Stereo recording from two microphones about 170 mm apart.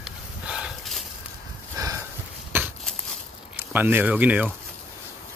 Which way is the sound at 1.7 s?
20° right (ahead or behind).